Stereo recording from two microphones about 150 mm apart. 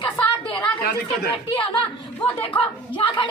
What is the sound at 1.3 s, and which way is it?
A woman's voice, 35° left (ahead or behind).